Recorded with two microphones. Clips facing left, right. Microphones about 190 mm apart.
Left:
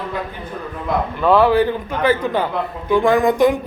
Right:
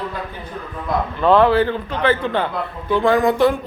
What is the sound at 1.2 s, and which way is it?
A man's voice, 5° left (ahead or behind).